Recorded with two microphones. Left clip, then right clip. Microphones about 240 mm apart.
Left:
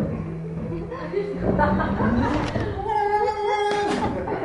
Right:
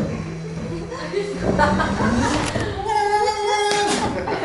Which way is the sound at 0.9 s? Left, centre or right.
Centre.